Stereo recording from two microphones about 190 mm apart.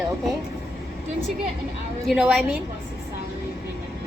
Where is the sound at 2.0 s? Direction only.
5° right (ahead or behind).